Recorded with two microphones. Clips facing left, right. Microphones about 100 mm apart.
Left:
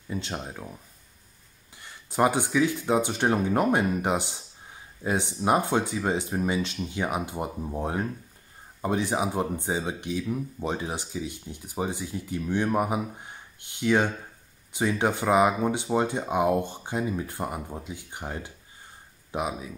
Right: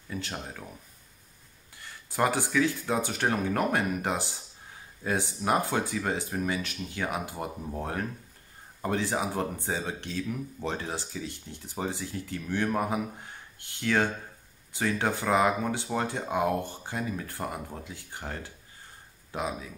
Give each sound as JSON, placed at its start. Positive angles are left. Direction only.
{"t": 0.1, "sound": "speech", "side_deg": 20}
{"t": 1.8, "sound": "speech", "side_deg": 20}